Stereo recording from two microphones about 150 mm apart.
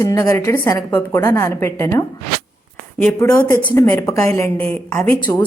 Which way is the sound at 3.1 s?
20° left (ahead or behind).